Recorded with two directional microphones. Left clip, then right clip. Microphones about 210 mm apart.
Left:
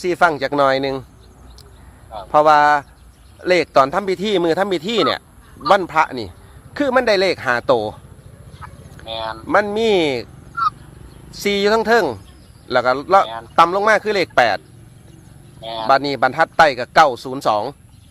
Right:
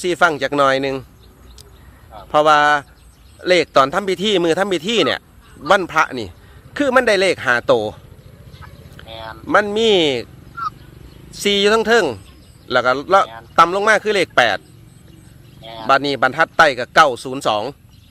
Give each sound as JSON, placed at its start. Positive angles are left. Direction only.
{"t": 0.0, "sound": "speech", "side_deg": -15}
{"t": 2.3, "sound": "speech", "side_deg": -10}
{"t": 8.6, "sound": "fowl", "side_deg": 15}
{"t": 9.0, "sound": "speech", "side_deg": 15}
{"t": 9.5, "sound": "speech", "side_deg": -15}
{"t": 11.3, "sound": "speech", "side_deg": -15}
{"t": 15.6, "sound": "speech", "side_deg": 10}
{"t": 15.9, "sound": "speech", "side_deg": -15}